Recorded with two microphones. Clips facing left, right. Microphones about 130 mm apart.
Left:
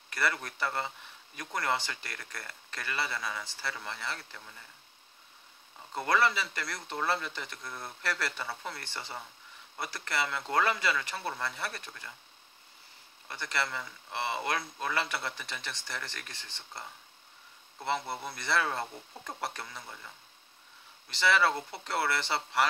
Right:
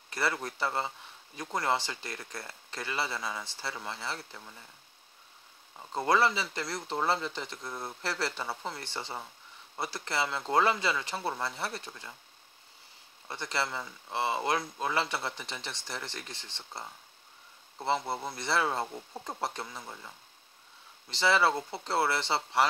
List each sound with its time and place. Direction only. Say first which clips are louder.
0.1 s speech: right 1 dB; 25° right (ahead or behind)
5.9 s speech: right 2 dB; 25° right (ahead or behind)
13.3 s speech: right 1 dB; 25° right (ahead or behind)
17.8 s speech: right 3 dB; 25° right (ahead or behind)
21.2 s speech: right 1 dB; 25° right (ahead or behind)